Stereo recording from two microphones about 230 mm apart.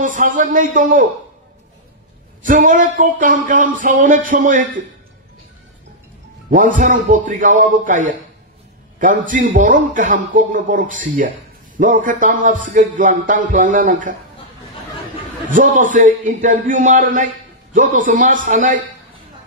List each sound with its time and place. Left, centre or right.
0.0 s a man's voice: right
2.4 s a man's voice: right
6.5 s a man's voice: right
15.5 s a man's voice: right